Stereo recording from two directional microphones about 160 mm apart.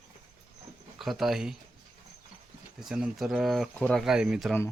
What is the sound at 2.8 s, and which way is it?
Speech, 5° right (ahead or behind).